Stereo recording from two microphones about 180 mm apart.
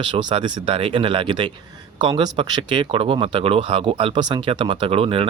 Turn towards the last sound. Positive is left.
turn(degrees=-30)  # may be behind; listen again after turning